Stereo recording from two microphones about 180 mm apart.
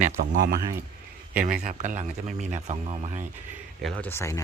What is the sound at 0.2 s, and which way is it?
Speech, 55° right (ahead or behind).